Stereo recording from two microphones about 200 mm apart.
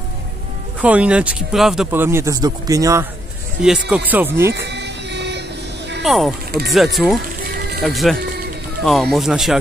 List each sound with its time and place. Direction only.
0.7 s speech: 5° right (ahead or behind)
3.6 s speech: 5° right (ahead or behind)
4.7 s music: 60° right (ahead or behind)
6.0 s speech: centre (ahead or behind)